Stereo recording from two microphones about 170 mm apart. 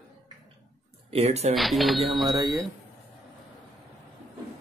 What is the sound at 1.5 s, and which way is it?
Speech, centre (ahead or behind).